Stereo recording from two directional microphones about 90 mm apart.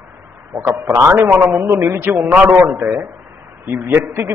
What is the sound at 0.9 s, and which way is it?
A man's voice, 25° right (ahead or behind).